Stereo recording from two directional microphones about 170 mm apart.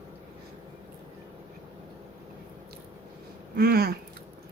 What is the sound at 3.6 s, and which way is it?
Speech, 70° right (ahead or behind).